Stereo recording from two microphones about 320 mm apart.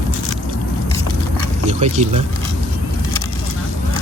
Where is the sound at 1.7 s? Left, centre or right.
Right.